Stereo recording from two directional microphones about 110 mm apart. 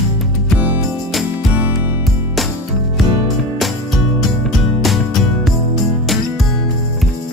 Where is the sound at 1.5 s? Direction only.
15° right (ahead or behind).